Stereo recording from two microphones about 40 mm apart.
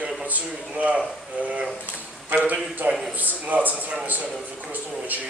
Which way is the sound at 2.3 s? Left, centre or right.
Right.